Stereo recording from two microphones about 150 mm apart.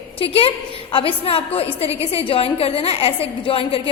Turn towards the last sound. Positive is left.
turn(degrees=35)  # may be behind; listen again after turning